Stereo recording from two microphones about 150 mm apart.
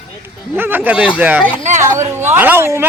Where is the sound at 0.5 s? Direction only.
15° right (ahead or behind).